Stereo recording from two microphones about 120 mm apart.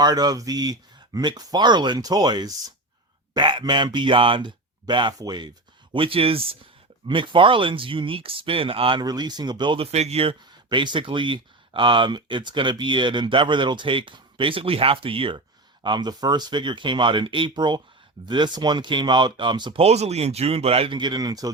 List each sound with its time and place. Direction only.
0.0 s speech: 35° right (ahead or behind)
5.9 s speech: 50° right (ahead or behind)
9.0 s speech: 35° right (ahead or behind); by 10.3 s 60° right (ahead or behind)
10.7 s speech: 40° right (ahead or behind)
15.8 s speech: 35° right (ahead or behind)
19.8 s speech: 65° right (ahead or behind); by 21.5 s 30° right (ahead or behind)